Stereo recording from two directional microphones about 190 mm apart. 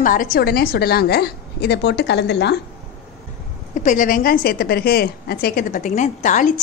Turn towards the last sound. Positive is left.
turn(degrees=40)  # may be behind; listen again after turning